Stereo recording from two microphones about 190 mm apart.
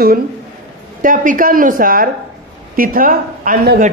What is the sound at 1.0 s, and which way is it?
Speech, 45° right (ahead or behind).